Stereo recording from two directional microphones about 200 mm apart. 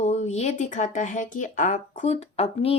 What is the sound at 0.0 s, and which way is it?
Speech, 35° left (ahead or behind).